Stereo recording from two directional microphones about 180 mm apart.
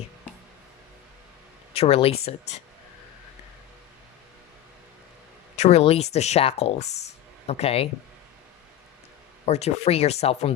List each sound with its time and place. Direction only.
1.7 s speech: 35° left (ahead or behind)
5.5 s speech: 35° left (ahead or behind)
9.5 s speech: 35° left (ahead or behind)